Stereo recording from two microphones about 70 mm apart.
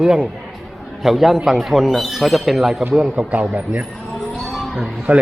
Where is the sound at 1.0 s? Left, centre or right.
Centre.